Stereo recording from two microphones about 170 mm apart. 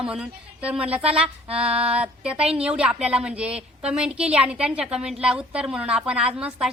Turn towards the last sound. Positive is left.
turn(degrees=-5)  # may be behind; listen again after turning